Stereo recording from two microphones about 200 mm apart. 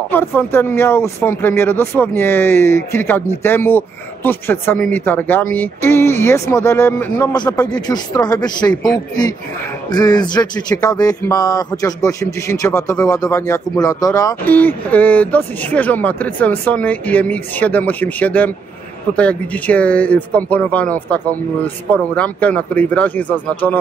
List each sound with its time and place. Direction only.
0.1 s a man's voice: 10° left (ahead or behind)